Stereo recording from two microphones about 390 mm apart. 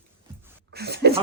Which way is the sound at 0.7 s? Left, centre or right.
Right.